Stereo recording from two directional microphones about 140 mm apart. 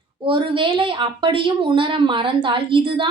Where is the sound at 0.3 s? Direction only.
35° right (ahead or behind).